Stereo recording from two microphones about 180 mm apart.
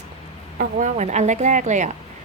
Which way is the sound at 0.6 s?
45° right (ahead or behind).